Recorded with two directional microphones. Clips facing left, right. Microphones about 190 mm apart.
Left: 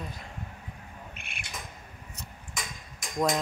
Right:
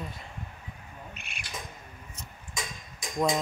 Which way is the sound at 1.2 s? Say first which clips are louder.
Left 1 dB; 55° left (ahead or behind).